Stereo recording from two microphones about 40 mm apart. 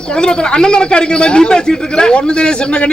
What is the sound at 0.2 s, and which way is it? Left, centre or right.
A man's voice, left.